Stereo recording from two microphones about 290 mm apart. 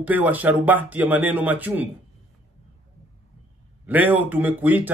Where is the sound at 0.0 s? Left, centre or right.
Centre.